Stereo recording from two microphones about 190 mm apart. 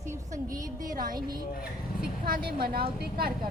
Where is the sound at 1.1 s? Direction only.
20° right (ahead or behind).